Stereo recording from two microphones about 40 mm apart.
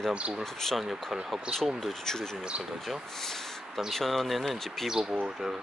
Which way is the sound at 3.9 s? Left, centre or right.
Centre.